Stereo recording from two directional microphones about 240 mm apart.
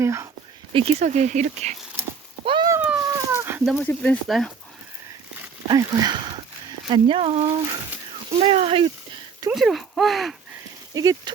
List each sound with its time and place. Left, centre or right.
0.0 s speech: centre
0.7 s speech: right
2.4 s a sound: centre
3.8 s speech: centre
5.6 s speech: centre
8.3 s a sound: right
9.5 s speech: centre
10.9 s speech: centre